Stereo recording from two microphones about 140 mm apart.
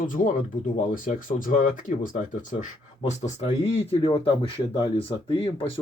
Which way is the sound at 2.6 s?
55° left (ahead or behind).